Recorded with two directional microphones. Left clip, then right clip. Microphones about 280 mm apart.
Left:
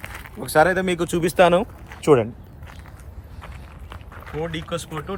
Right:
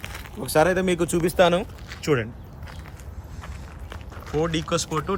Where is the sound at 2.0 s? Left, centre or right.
Left.